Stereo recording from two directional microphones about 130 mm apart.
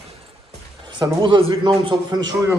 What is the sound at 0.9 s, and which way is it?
Speech, 35° right (ahead or behind).